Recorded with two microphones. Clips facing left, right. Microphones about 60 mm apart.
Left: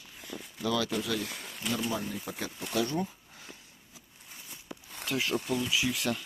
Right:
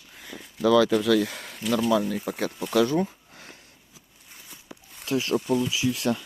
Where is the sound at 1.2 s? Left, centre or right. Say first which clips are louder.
Right 4 dB; right.